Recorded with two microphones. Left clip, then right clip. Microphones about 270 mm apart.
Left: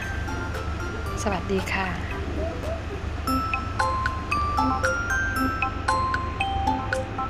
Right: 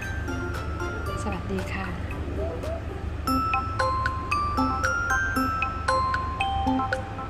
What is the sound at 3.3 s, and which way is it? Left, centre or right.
Music, centre.